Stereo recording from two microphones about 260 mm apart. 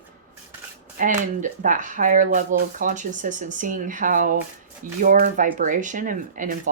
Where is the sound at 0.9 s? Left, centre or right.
Right.